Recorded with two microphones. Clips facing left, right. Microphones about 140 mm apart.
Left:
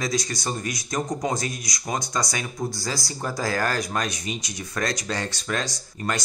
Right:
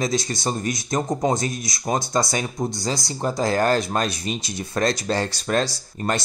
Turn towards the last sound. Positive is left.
turn(degrees=-30)  # may be behind; listen again after turning